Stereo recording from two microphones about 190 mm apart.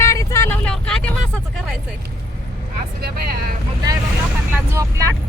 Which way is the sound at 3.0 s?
55° right (ahead or behind).